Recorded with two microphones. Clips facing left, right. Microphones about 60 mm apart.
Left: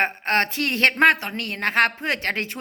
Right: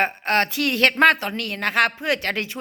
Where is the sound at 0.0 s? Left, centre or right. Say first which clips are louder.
Right 1 dB; left.